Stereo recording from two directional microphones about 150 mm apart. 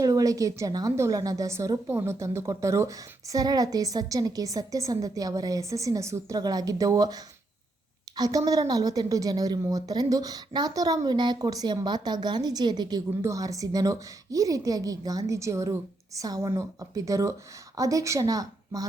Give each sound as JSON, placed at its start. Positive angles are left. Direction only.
{"t": 0.0, "sound": "a woman's voice", "side_deg": -25}